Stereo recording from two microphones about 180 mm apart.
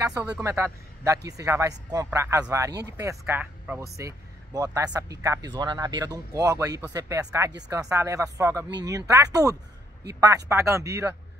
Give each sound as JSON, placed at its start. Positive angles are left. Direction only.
{"t": 0.0, "sound": "speech", "side_deg": -20}
{"t": 4.6, "sound": "speech", "side_deg": -20}